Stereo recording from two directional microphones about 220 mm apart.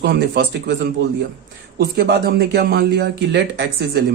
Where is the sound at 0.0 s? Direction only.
50° right (ahead or behind).